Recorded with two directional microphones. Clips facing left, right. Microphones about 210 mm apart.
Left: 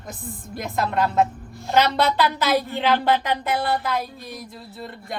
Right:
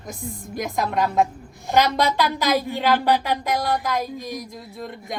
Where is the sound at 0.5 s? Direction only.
15° right (ahead or behind).